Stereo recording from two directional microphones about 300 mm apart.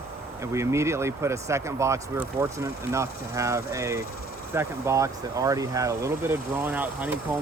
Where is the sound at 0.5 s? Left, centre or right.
Centre.